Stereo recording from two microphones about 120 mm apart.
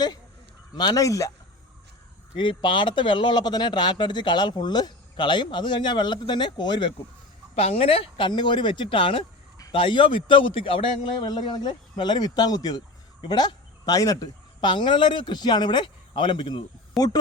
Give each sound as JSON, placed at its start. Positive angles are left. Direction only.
{"t": 0.8, "sound": "speech", "side_deg": 30}
{"t": 2.3, "sound": "speech", "side_deg": 40}
{"t": 7.5, "sound": "a man's voice", "side_deg": 55}
{"t": 16.9, "sound": "speech", "side_deg": 0}